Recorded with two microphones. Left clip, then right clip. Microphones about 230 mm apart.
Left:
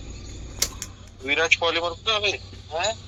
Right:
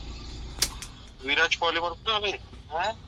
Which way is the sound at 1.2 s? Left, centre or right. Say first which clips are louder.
Left 3 dB; centre.